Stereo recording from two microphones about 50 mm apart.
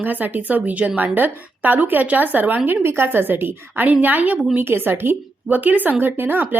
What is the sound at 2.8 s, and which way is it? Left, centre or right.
A woman's voice, right.